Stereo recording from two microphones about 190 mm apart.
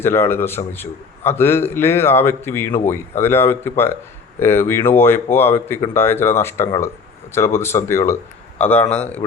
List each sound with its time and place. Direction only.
0.0 s a man's voice: 15° left (ahead or behind)